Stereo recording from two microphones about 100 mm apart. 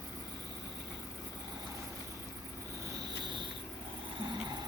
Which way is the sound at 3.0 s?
50° right (ahead or behind).